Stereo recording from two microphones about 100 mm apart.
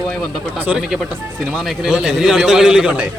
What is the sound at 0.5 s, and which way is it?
A man's voice, 15° right (ahead or behind).